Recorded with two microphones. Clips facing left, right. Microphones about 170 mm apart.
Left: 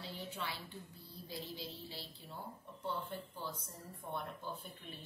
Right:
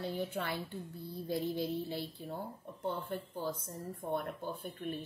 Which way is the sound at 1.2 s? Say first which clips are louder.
Right 12 dB; 55° right (ahead or behind).